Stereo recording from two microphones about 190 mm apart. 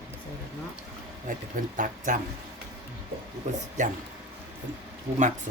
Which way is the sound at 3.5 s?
40° right (ahead or behind).